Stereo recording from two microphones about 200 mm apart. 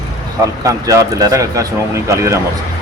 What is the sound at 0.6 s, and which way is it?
Speech, 15° right (ahead or behind).